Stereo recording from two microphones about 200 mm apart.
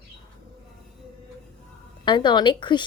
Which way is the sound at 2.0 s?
25° left (ahead or behind).